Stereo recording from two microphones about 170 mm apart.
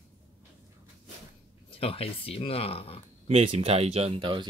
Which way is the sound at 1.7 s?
35° left (ahead or behind).